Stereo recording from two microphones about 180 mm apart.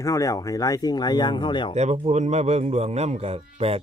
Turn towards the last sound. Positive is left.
turn(degrees=-35)  # may be behind; listen again after turning